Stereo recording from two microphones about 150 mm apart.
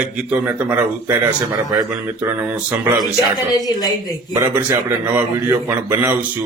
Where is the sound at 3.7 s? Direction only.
25° left (ahead or behind).